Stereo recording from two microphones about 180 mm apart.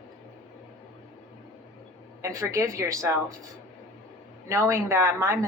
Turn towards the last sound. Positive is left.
turn(degrees=-15)  # may be behind; listen again after turning